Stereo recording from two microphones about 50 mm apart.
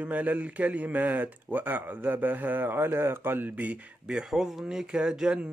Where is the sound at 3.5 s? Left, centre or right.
Right.